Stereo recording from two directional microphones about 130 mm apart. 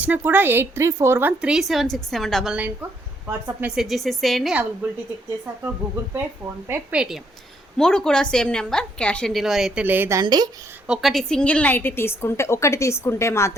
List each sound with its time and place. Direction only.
0.0 s a woman's voice: 15° right (ahead or behind)
1.4 s a woman's voice: 5° right (ahead or behind)
3.8 s a woman's voice: centre (ahead or behind)
4.8 s a woman's voice: 15° right (ahead or behind)
6.7 s a woman's voice: 5° right (ahead or behind)
7.8 s a woman's voice: 5° left (ahead or behind)
9.8 s a woman's voice: 15° right (ahead or behind)
10.2 s speech: 30° right (ahead or behind)
10.8 s a woman's voice: 5° right (ahead or behind); by 13.6 s 20° left (ahead or behind)